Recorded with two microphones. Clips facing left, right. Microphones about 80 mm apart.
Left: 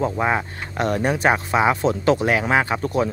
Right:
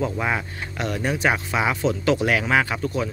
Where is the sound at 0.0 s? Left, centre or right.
Left.